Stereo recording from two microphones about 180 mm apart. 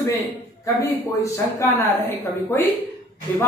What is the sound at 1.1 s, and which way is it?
Speech, 15° left (ahead or behind).